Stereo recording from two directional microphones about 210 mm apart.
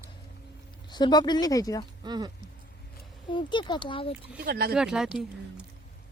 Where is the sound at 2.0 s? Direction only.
20° right (ahead or behind).